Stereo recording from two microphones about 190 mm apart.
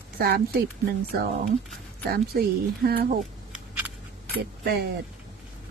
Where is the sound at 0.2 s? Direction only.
55° right (ahead or behind).